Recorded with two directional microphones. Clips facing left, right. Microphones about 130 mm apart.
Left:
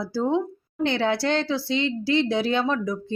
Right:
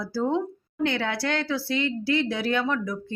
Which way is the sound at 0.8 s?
30° left (ahead or behind).